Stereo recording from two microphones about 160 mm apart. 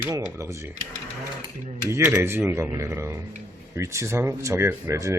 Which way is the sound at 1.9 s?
15° right (ahead or behind).